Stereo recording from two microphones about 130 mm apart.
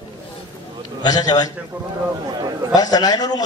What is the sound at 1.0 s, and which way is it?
Speech, 30° left (ahead or behind).